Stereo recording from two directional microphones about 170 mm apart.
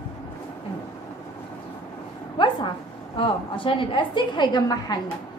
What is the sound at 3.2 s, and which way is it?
A woman's voice, 30° left (ahead or behind).